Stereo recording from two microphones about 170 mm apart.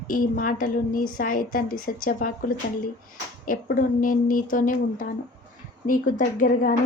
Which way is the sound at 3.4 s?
55° left (ahead or behind).